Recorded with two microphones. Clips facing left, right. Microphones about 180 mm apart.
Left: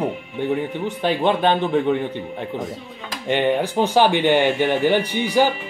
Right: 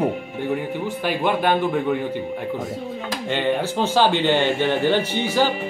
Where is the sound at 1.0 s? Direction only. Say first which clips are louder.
Left 3 dB; 20° left (ahead or behind).